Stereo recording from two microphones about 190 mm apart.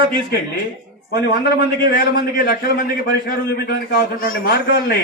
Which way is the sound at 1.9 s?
50° left (ahead or behind).